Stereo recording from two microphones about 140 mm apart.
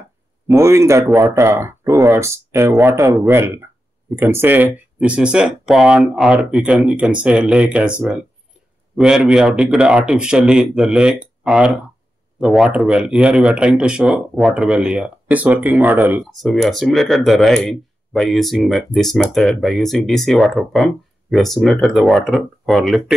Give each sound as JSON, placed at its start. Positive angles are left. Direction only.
{"t": 0.5, "sound": "speech", "side_deg": -20}
{"t": 16.3, "sound": "speech", "side_deg": 0}